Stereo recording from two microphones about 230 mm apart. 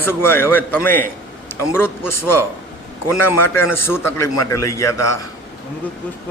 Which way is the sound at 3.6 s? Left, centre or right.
Left.